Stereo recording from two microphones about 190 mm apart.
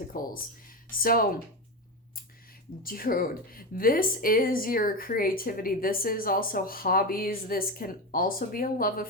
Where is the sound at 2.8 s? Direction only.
50° left (ahead or behind).